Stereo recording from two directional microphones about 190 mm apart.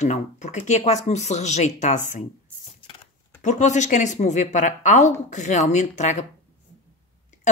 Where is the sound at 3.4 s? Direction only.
40° left (ahead or behind).